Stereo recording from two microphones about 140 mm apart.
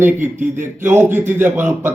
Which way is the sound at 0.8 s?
15° right (ahead or behind).